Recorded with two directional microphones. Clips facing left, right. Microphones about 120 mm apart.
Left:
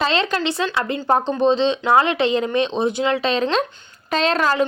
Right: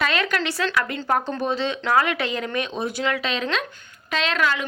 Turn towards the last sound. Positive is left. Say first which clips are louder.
# left 5 dB
turn(degrees=35)  # may be behind; listen again after turning